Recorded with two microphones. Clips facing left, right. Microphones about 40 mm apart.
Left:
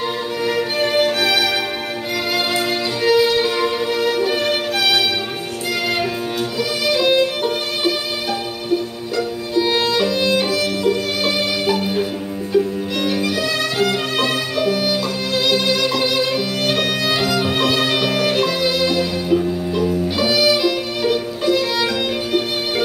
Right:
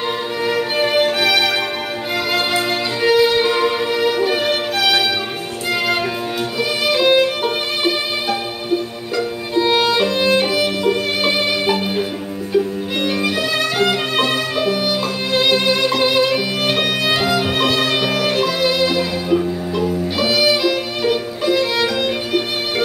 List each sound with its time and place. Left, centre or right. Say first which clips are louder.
0.5 s music: right 1 dB; centre
9.1 s violin: right 1 dB; centre
15.3 s music: right 2 dB; right
20.2 s violin: right 1 dB; centre